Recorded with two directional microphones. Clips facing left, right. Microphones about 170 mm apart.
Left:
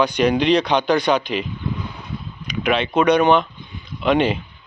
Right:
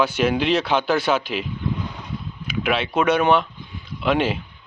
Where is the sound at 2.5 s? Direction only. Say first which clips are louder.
Left 2 dB; 5° right (ahead or behind).